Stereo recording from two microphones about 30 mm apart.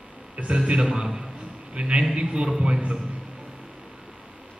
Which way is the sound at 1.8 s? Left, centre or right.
Right.